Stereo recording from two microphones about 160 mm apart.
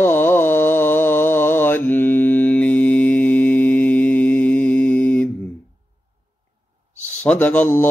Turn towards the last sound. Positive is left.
turn(degrees=15)  # may be behind; listen again after turning